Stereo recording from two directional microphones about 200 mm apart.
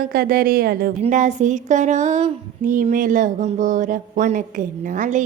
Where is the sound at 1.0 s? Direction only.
35° right (ahead or behind).